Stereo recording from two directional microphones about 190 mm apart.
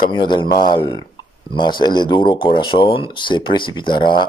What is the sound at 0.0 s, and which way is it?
Speech, 25° left (ahead or behind).